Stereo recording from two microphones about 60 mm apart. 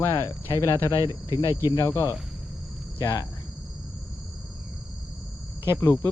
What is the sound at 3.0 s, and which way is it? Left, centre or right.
Cricket, left.